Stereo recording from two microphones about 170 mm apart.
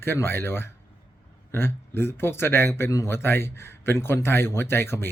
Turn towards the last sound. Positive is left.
turn(degrees=15)  # may be behind; listen again after turning